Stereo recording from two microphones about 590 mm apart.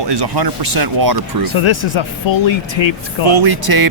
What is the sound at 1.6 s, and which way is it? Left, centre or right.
Speech, left.